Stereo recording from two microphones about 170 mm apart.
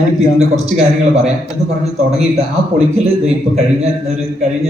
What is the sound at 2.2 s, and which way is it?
Speech, 40° right (ahead or behind).